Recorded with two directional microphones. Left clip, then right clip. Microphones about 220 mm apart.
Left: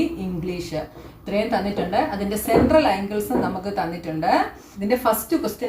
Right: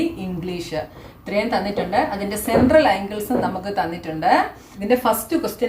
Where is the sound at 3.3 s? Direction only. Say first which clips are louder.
Right 4 dB; 30° right (ahead or behind).